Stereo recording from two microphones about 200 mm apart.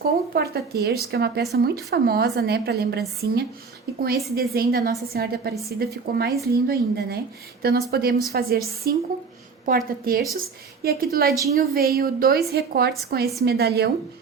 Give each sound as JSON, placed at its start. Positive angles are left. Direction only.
{"t": 0.3, "sound": "a woman's voice", "side_deg": -50}